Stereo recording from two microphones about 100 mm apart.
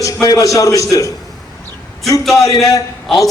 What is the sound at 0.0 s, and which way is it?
A man's voice, 35° left (ahead or behind).